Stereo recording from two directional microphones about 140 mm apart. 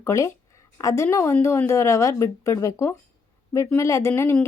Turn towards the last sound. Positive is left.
turn(degrees=20)  # may be behind; listen again after turning